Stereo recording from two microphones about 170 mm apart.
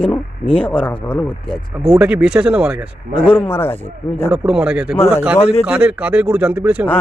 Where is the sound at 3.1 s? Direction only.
5° left (ahead or behind).